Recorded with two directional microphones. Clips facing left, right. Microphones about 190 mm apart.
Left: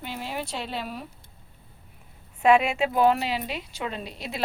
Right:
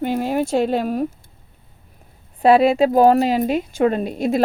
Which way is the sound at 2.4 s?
35° right (ahead or behind).